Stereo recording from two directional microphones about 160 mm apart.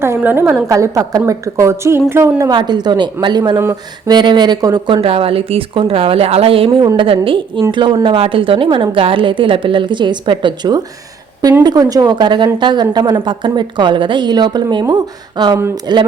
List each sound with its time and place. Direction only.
0.0 s a woman's voice: 15° right (ahead or behind)
2.5 s a woman's voice: 25° right (ahead or behind)
4.9 s a woman's voice: 35° right (ahead or behind)